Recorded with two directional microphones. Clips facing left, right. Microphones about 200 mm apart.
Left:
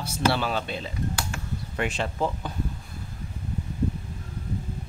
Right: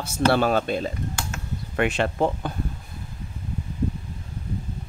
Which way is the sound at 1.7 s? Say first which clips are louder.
Right 6 dB; 65° right (ahead or behind).